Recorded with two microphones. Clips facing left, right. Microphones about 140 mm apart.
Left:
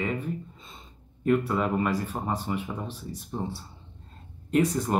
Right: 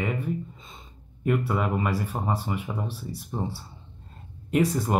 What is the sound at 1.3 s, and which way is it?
Speech, 5° right (ahead or behind).